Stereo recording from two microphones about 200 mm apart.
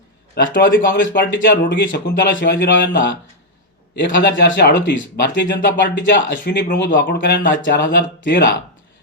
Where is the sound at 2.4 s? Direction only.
60° left (ahead or behind).